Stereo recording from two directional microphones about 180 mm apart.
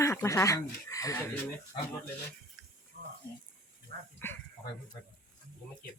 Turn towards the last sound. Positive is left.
turn(degrees=10)  # may be behind; listen again after turning